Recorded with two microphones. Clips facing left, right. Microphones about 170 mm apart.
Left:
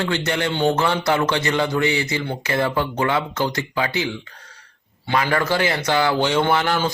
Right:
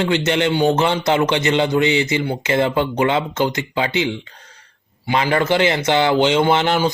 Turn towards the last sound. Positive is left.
turn(degrees=-20)  # may be behind; listen again after turning